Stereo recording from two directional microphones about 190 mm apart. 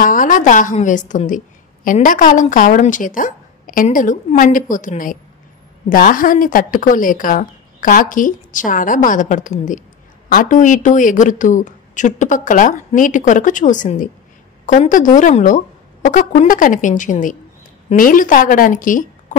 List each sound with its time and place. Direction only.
0.0 s a woman's voice: 45° left (ahead or behind)